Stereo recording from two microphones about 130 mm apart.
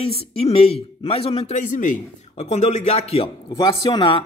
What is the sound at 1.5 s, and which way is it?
Speech, 85° left.